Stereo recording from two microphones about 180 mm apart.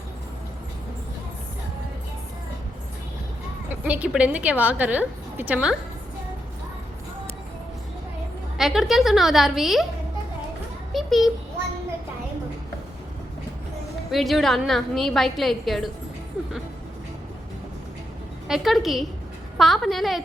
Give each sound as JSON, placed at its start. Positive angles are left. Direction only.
{"t": 3.8, "sound": "a woman's voice", "side_deg": -5}
{"t": 8.5, "sound": "a woman's voice", "side_deg": 0}
{"t": 10.9, "sound": "a sound", "side_deg": 0}
{"t": 14.1, "sound": "a woman's voice", "side_deg": 0}
{"t": 18.4, "sound": "a woman's voice", "side_deg": 0}